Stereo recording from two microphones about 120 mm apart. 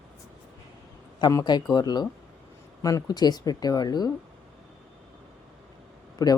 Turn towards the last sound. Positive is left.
turn(degrees=30)  # may be behind; listen again after turning